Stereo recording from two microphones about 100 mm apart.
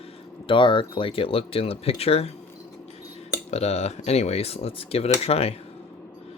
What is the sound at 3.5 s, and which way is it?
Speech, 90° left.